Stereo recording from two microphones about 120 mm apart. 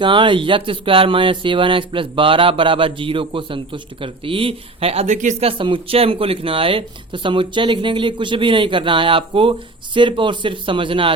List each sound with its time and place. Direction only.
0.0 s speech: 45° right (ahead or behind); by 5.5 s 90° right
5.5 s speech: 45° right (ahead or behind)